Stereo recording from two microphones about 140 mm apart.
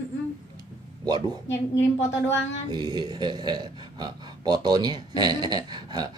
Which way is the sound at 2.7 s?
30° right (ahead or behind).